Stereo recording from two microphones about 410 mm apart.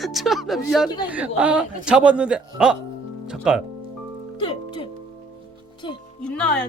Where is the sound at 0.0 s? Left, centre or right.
Centre.